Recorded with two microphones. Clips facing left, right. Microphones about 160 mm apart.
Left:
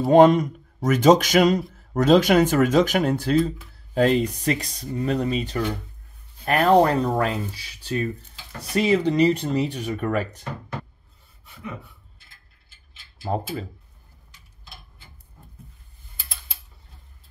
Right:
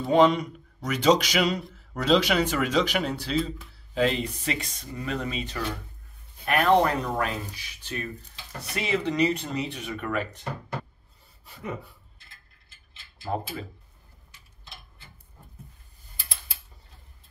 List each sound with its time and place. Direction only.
0.1 s speech: 45° left (ahead or behind)